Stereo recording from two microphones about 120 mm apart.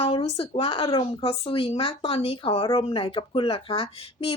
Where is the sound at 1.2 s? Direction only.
45° left (ahead or behind).